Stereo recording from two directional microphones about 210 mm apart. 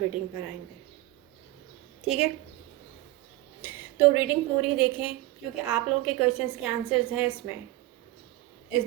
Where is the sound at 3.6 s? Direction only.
5° right (ahead or behind).